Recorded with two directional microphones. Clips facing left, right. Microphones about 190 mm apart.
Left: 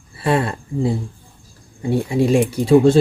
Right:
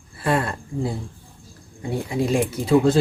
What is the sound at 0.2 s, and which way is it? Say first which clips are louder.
Speech: left 3 dB; 25° left (ahead or behind).